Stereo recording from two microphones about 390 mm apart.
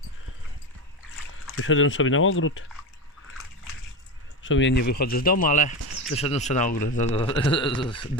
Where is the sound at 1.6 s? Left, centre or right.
Left.